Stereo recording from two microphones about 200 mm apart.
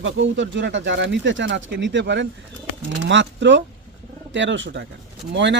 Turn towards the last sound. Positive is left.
turn(degrees=-60)  # may be behind; listen again after turning